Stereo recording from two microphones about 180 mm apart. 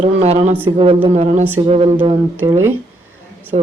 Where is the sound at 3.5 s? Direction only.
35° right (ahead or behind).